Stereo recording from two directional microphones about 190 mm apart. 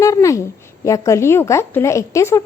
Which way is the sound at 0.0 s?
15° left (ahead or behind).